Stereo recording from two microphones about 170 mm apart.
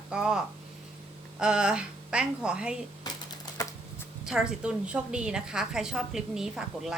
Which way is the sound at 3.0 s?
25° left (ahead or behind).